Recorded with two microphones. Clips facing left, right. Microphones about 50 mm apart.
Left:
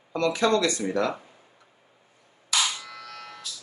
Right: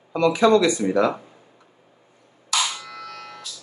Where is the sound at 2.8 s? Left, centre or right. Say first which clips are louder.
Right 4 dB; centre.